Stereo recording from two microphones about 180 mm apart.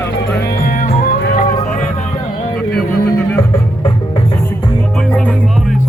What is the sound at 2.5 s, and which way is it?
Music, 5° left (ahead or behind).